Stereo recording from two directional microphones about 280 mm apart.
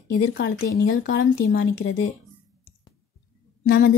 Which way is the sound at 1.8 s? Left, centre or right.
Left.